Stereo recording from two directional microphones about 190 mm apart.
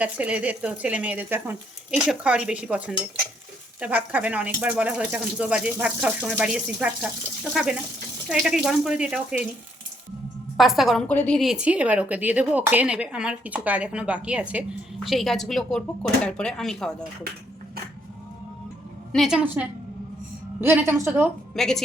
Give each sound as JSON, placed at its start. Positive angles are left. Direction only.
{"t": 0.0, "sound": "a woman's voice", "side_deg": -5}
{"t": 10.6, "sound": "a woman's voice", "side_deg": 0}
{"t": 19.1, "sound": "a woman's voice", "side_deg": 0}
{"t": 21.5, "sound": "a woman's voice", "side_deg": 5}